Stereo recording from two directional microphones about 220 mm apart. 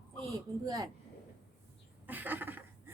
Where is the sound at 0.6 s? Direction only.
15° right (ahead or behind).